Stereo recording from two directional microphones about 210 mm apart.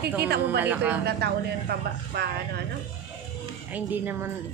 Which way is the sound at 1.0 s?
50° right (ahead or behind).